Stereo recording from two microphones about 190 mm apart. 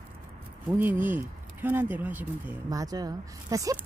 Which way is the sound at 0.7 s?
10° right (ahead or behind).